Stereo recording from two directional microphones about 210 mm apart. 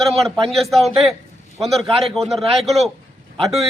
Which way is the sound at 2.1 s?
Centre (ahead or behind).